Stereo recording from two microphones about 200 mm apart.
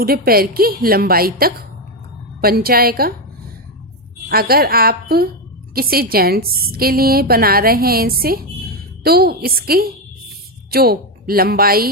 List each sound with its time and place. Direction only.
0.0 s a woman's voice: 50° right (ahead or behind)
4.3 s a woman's voice: 50° right (ahead or behind)